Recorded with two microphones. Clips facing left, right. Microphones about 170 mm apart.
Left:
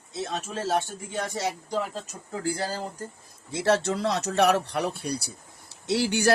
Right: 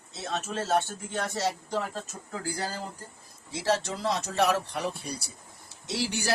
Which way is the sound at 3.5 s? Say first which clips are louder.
Left 4 dB; 65° left (ahead or behind).